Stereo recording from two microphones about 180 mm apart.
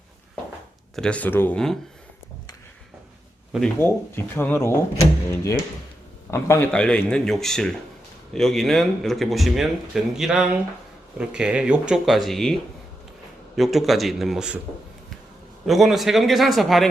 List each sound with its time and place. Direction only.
0.9 s speech: 5° left (ahead or behind)
3.8 s speech: 10° left (ahead or behind)
13.6 s speech: centre (ahead or behind)
15.6 s speech: centre (ahead or behind)